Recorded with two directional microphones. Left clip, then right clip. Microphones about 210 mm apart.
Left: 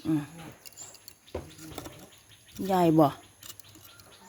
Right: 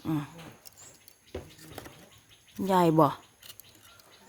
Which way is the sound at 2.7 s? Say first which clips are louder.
Even; 15° right (ahead or behind).